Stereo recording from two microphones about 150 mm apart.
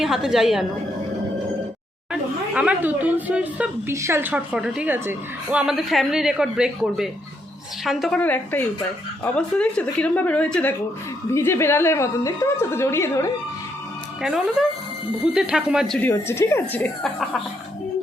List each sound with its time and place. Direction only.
0.0 s a woman's voice: centre (ahead or behind)
2.5 s a woman's voice: 10° right (ahead or behind)
8.2 s a woman's voice: 10° left (ahead or behind)
14.2 s a woman's voice: centre (ahead or behind)
16.0 s a woman's voice: 15° left (ahead or behind)